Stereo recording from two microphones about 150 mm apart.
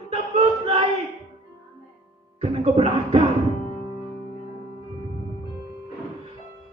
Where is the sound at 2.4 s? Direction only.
45° right (ahead or behind).